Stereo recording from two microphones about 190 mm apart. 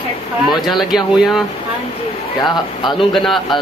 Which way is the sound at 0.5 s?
Centre (ahead or behind).